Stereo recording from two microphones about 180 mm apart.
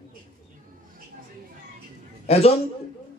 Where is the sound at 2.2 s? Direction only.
35° left (ahead or behind).